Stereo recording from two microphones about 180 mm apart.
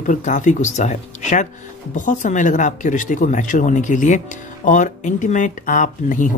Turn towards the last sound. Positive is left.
turn(degrees=45)  # may be behind; listen again after turning